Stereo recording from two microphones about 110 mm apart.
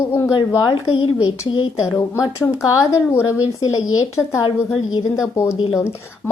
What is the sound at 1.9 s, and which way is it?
A woman's voice, 30° left (ahead or behind).